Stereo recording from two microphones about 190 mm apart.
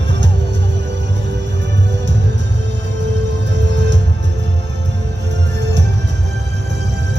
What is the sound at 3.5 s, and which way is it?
Music, 65° right (ahead or behind).